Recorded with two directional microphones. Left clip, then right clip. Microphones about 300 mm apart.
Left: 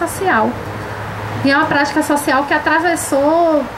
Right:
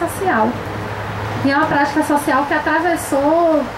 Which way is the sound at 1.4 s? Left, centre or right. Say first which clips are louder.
Left 2 dB; centre.